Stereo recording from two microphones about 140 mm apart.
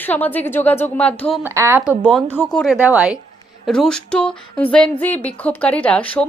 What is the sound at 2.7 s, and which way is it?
Speech, 10° right (ahead or behind).